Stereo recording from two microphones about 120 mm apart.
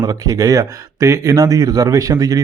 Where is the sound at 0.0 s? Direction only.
30° right (ahead or behind).